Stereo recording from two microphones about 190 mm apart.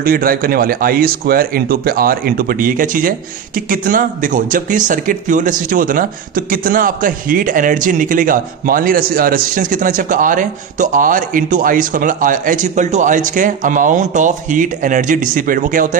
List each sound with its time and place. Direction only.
0.0 s speech: 50° right (ahead or behind)